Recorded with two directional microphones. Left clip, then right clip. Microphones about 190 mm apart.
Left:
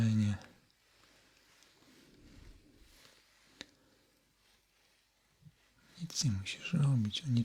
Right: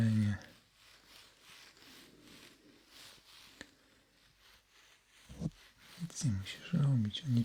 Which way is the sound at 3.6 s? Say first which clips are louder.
Left 4 dB; 15° left (ahead or behind).